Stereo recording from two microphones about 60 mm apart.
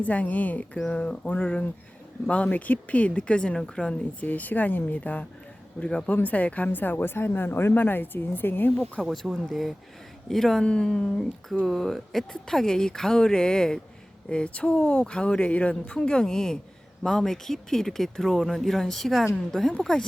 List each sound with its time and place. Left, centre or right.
0.0 s speech: left
4.3 s a woman's voice: left
9.0 s speech: centre